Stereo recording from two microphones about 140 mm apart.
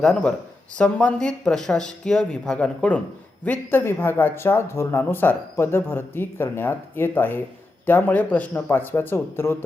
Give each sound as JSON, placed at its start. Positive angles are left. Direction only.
{"t": 0.0, "sound": "speech", "side_deg": 5}